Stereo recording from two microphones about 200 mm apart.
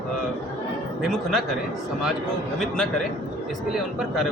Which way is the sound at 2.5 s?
Centre (ahead or behind).